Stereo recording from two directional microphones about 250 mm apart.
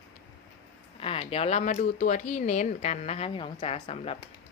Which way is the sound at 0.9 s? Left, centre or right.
Left.